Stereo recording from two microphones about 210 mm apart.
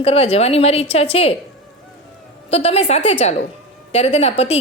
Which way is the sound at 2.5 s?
30° left (ahead or behind).